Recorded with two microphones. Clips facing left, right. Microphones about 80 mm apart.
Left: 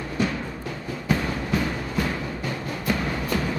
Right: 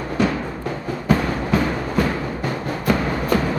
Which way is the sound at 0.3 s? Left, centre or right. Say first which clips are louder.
Right 6 dB; right.